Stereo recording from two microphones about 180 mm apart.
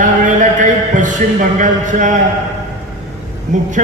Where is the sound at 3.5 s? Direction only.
45° right (ahead or behind).